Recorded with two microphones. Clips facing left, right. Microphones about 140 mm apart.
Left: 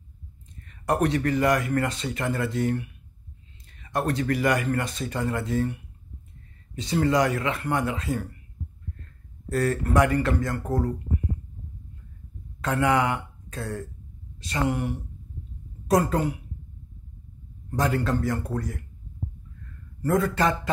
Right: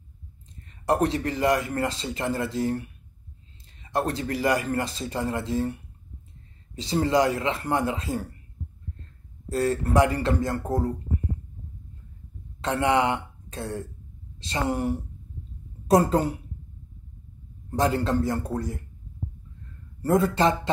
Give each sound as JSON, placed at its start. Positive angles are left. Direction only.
{"t": 0.7, "sound": "speech", "side_deg": -30}
{"t": 9.5, "sound": "speech", "side_deg": -25}
{"t": 12.6, "sound": "speech", "side_deg": -25}
{"t": 17.6, "sound": "speech", "side_deg": -25}
{"t": 20.0, "sound": "speech", "side_deg": -30}